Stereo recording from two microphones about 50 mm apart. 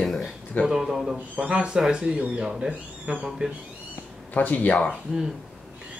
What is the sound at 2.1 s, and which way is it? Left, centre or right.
Speech, right.